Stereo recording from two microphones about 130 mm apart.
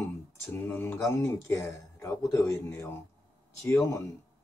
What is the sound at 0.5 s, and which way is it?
Speech, 15° left (ahead or behind).